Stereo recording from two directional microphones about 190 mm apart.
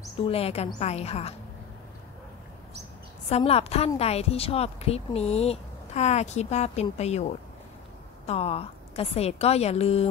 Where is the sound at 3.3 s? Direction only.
30° left (ahead or behind).